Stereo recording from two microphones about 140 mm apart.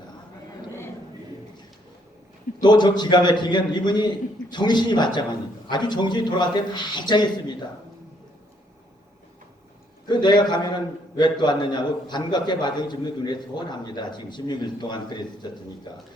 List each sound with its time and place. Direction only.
2.6 s a man's voice: 30° left (ahead or behind)
10.1 s a man's voice: 30° left (ahead or behind)